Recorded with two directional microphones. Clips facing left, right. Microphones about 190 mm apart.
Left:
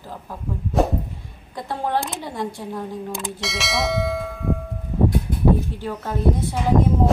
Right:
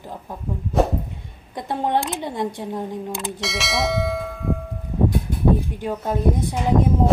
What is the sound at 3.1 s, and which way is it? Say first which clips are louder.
Bell: right 1 dB; centre (ahead or behind).